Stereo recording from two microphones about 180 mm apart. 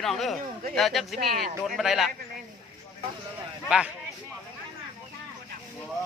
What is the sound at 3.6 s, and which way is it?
Speech, 5° right (ahead or behind).